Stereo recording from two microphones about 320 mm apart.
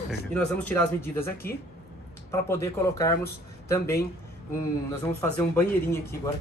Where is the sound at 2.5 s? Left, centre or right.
Centre.